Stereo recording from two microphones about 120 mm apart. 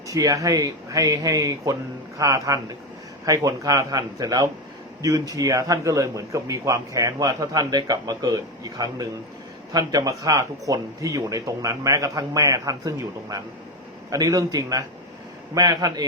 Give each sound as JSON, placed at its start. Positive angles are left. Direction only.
{"t": 0.1, "sound": "a man's voice", "side_deg": -30}